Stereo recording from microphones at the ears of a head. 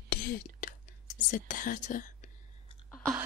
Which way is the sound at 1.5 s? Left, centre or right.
Left.